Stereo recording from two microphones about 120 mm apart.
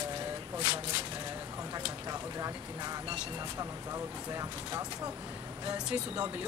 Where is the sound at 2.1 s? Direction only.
30° right (ahead or behind).